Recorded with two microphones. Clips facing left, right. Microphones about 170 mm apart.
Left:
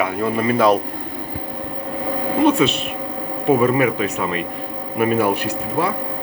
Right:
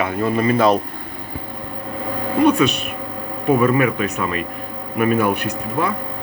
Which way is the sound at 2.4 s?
25° left (ahead or behind).